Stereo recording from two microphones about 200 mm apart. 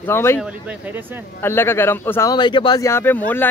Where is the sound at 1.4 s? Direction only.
10° left (ahead or behind).